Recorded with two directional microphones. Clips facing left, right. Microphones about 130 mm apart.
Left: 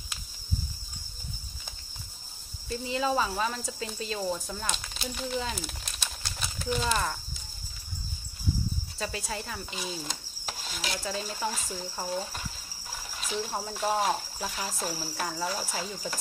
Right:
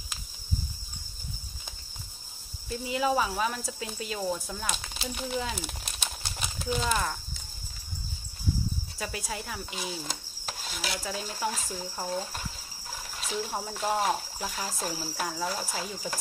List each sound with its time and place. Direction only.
2.7 s speech: 5° right (ahead or behind)
5.6 s crumpling: 15° right (ahead or behind)
6.6 s speech: 5° right (ahead or behind)
8.9 s speech: 5° right (ahead or behind)